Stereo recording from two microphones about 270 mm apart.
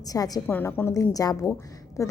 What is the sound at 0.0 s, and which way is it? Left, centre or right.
Speech, centre.